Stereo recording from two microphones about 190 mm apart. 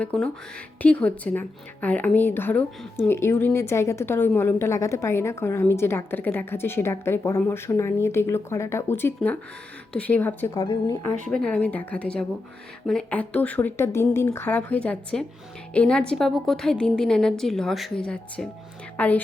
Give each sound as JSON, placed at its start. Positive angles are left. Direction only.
{"t": 0.0, "sound": "a woman's voice", "side_deg": 5}
{"t": 10.5, "sound": "a woman's voice", "side_deg": 25}
{"t": 11.3, "sound": "a woman's voice", "side_deg": 5}